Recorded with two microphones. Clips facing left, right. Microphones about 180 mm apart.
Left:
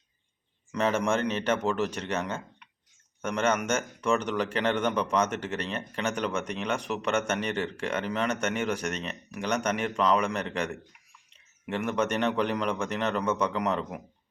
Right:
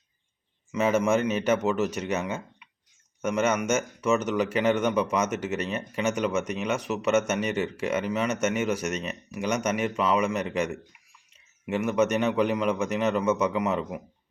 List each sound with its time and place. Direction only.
0.7 s a man's voice: 5° right (ahead or behind)